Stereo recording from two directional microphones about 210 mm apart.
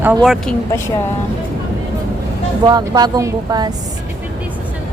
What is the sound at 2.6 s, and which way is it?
A woman's voice, 20° right (ahead or behind).